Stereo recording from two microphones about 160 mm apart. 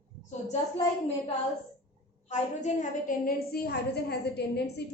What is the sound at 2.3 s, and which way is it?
A woman's voice, 50° left (ahead or behind).